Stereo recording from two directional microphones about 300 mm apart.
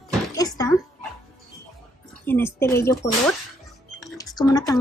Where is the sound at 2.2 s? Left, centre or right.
Centre.